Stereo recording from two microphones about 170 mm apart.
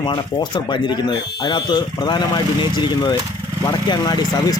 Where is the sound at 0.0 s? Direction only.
25° left (ahead or behind).